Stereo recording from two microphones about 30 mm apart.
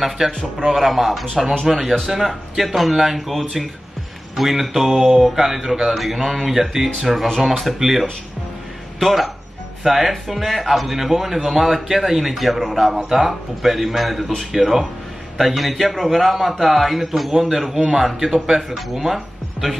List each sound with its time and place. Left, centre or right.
0.2 s a man's voice: centre
0.7 s a man's voice: centre
5.3 s speech: centre
6.5 s speech: centre
7.0 s a man's voice: centre